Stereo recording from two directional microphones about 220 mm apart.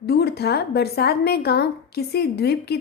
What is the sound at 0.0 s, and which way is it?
A woman's voice, 45° left (ahead or behind).